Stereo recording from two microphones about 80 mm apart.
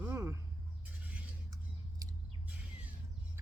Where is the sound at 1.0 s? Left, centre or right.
Centre.